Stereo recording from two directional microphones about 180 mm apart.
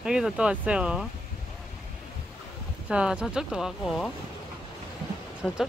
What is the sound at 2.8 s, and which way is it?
Speech, 5° right (ahead or behind).